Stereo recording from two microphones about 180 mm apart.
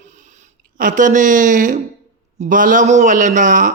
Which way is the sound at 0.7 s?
45° right (ahead or behind).